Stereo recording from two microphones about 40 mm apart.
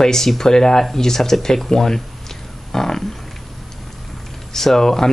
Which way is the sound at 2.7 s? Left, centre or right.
Centre.